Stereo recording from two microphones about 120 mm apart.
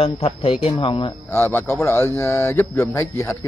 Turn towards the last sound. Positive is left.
turn(degrees=20)  # may be behind; listen again after turning